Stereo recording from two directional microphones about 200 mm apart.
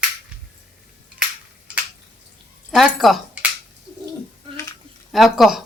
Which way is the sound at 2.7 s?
Centre (ahead or behind).